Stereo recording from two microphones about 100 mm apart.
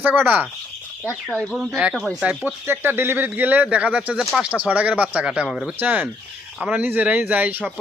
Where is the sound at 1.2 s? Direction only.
5° left (ahead or behind).